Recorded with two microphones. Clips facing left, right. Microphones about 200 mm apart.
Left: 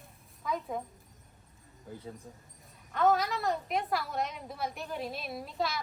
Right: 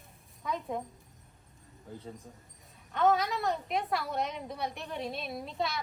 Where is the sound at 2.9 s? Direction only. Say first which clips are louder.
Even; centre (ahead or behind).